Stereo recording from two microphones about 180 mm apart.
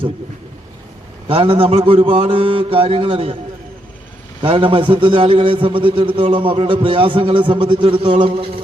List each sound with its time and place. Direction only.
1.3 s mantra: 30° right (ahead or behind)
4.4 s a man's voice: 30° right (ahead or behind)